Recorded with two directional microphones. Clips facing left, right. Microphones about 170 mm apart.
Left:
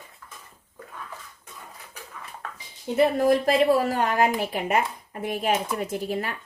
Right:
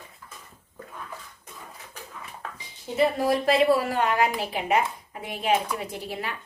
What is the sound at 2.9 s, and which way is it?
A woman's voice, 45° left (ahead or behind).